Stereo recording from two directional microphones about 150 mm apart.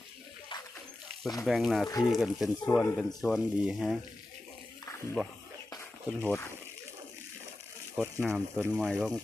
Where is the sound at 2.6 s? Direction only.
10° left (ahead or behind).